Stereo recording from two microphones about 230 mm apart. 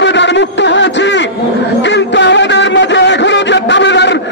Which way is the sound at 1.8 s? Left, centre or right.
Left.